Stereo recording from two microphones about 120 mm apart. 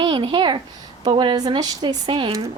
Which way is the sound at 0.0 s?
45° right (ahead or behind).